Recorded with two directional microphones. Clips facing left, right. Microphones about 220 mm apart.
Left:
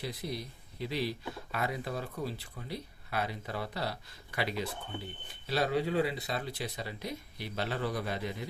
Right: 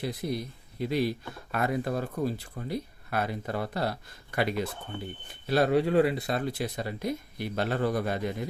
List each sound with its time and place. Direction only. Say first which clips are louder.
0.0 s speech: right 6 dB; 50° right (ahead or behind)